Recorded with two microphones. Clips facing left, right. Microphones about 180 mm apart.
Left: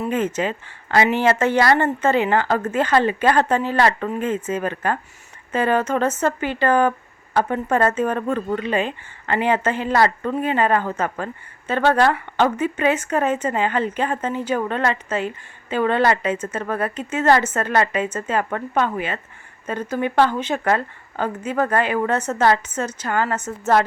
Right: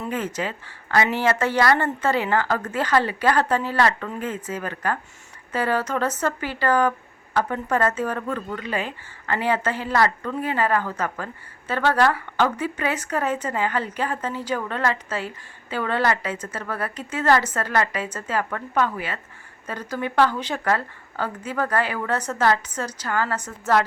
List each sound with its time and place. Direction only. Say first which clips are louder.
0.0 s a woman's voice: left 5 dB; 25° left (ahead or behind)